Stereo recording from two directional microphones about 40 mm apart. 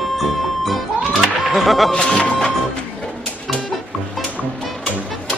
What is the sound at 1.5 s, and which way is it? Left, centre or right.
Speech, centre.